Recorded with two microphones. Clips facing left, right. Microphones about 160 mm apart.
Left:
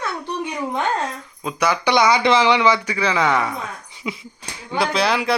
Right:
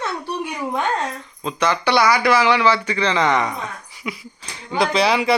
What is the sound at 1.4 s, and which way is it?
Speech, 10° left (ahead or behind).